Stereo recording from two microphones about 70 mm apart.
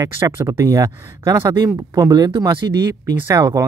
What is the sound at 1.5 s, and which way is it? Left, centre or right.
Speech, right.